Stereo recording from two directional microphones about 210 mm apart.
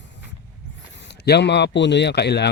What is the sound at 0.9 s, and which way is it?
Speech, 55° left (ahead or behind).